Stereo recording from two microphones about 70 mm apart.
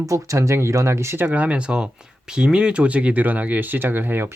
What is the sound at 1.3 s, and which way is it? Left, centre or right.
Speech, centre.